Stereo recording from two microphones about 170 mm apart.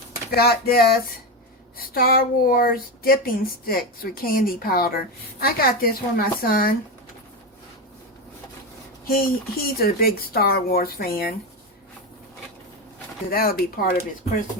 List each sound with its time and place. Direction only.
0.3 s speech: 65° left (ahead or behind)
9.0 s speech: 60° left (ahead or behind)
13.3 s speech: 60° left (ahead or behind)